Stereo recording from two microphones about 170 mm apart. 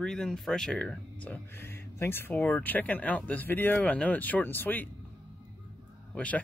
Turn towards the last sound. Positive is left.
turn(degrees=10)  # may be behind; listen again after turning